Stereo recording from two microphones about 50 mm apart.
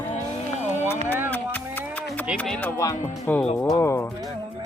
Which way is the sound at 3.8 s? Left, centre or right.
Left.